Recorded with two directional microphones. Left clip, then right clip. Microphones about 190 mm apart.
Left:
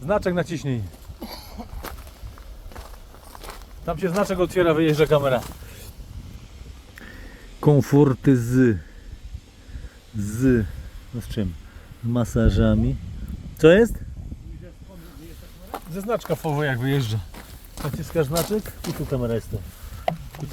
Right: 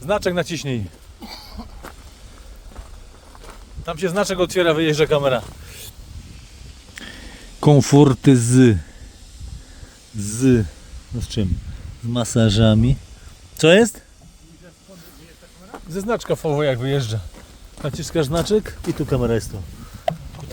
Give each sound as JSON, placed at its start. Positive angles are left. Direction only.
{"t": 0.0, "sound": "speech", "side_deg": -40}
{"t": 1.2, "sound": "a sound", "side_deg": -40}
{"t": 3.8, "sound": "speech", "side_deg": -45}
{"t": 6.9, "sound": "speech", "side_deg": -90}
{"t": 10.2, "sound": "speech", "side_deg": -90}
{"t": 12.1, "sound": "speech", "side_deg": -90}
{"t": 16.0, "sound": "speech", "side_deg": -50}
{"t": 16.5, "sound": "speech", "side_deg": -35}
{"t": 17.8, "sound": "speech", "side_deg": -50}